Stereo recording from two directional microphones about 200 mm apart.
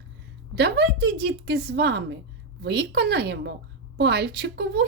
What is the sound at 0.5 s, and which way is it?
Speech, 55° right (ahead or behind).